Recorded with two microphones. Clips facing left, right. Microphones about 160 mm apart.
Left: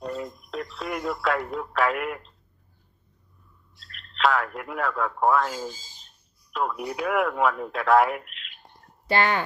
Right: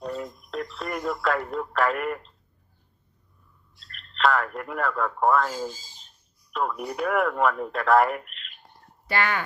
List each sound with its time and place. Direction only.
0.0 s a sound: centre (ahead or behind)
3.8 s speech: centre (ahead or behind)
9.0 s speech: 30° left (ahead or behind)